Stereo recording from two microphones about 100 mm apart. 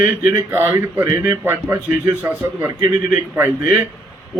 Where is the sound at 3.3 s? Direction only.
20° right (ahead or behind).